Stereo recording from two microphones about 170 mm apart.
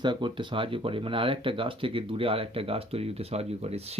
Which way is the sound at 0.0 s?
30° right (ahead or behind).